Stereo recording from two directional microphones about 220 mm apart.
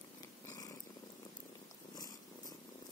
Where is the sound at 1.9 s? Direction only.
15° left (ahead or behind).